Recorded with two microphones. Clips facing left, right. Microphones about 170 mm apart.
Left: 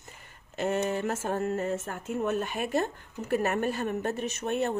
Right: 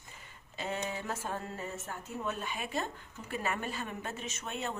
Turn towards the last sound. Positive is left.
turn(degrees=60)  # may be behind; listen again after turning